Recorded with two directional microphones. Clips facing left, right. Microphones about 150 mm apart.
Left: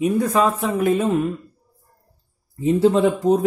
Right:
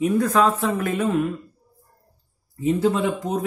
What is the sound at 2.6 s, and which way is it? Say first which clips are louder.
Speech: left 4 dB; 30° left (ahead or behind).